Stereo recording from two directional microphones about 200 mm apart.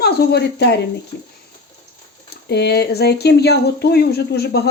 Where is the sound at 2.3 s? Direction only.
55° left (ahead or behind).